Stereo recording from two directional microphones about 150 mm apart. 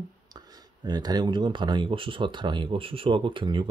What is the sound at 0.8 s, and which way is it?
Speech, 30° right (ahead or behind).